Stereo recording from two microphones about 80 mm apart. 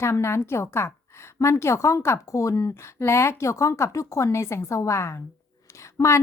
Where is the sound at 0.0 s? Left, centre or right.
Left.